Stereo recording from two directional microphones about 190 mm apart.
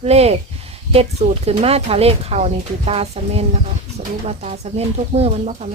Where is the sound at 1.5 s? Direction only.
30° right (ahead or behind).